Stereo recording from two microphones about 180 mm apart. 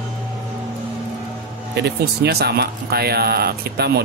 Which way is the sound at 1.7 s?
65° right (ahead or behind).